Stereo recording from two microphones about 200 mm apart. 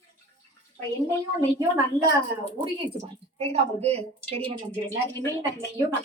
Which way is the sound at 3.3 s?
30° right (ahead or behind).